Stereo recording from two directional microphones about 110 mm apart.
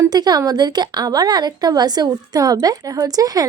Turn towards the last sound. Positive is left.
turn(degrees=-35)  # may be behind; listen again after turning